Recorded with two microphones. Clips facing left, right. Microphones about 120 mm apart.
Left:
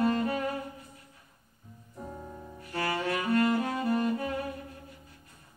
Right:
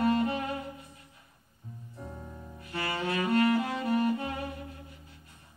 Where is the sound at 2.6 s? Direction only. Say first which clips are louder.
Left 3 dB; 35° left (ahead or behind).